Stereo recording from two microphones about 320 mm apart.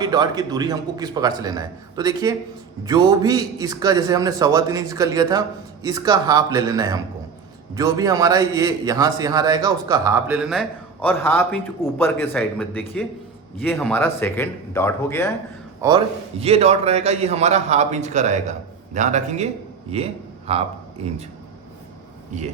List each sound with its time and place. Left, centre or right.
0.0 s a man's voice: centre
15.8 s a man's voice: centre
20.5 s speech: centre
22.3 s a man's voice: right